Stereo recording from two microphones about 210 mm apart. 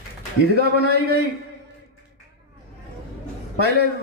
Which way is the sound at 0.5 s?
50° right (ahead or behind).